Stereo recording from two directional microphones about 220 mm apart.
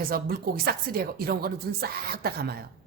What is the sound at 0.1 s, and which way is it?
A woman's voice, 45° right (ahead or behind).